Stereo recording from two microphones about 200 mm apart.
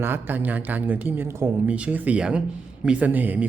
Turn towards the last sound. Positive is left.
turn(degrees=-10)  # may be behind; listen again after turning